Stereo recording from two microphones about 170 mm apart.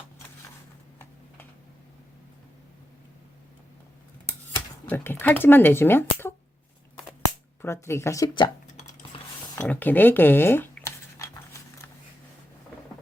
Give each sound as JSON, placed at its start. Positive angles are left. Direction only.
{"t": 4.9, "sound": "speech", "side_deg": 10}
{"t": 7.6, "sound": "speech", "side_deg": 15}
{"t": 9.6, "sound": "a sound", "side_deg": 10}